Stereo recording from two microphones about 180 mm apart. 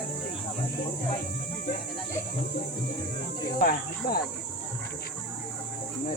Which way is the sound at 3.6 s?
55° left (ahead or behind).